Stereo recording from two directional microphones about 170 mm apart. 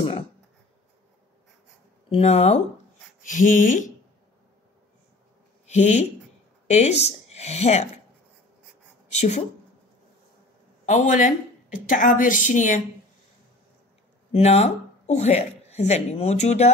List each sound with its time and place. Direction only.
2.0 s speech: 35° left (ahead or behind)
5.7 s speech: 40° left (ahead or behind)
9.1 s a woman's voice: 40° left (ahead or behind)
10.9 s a woman's voice: 45° left (ahead or behind)
14.3 s a woman's voice: 40° left (ahead or behind)